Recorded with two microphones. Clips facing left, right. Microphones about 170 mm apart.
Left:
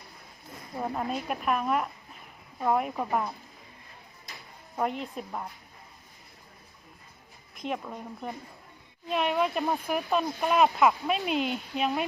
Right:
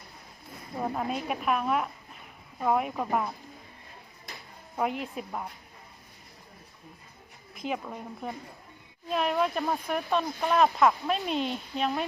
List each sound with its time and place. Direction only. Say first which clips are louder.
0.8 s speech: right 1 dB; centre (ahead or behind)
4.8 s speech: even; centre (ahead or behind)
7.5 s speech: even; centre (ahead or behind)